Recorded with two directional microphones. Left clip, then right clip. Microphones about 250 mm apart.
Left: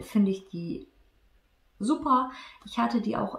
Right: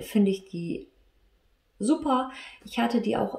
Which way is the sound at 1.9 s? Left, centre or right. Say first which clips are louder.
Left 1 dB; centre.